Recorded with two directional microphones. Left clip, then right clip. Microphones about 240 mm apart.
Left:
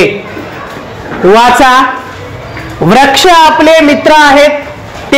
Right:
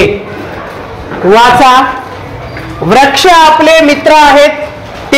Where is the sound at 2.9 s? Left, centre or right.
Left.